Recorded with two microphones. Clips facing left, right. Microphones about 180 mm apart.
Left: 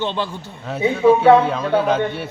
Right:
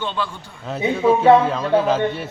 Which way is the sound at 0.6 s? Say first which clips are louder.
Left 3 dB; centre (ahead or behind).